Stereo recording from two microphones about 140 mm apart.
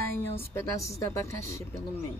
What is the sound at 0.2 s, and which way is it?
A woman's voice, 15° left (ahead or behind).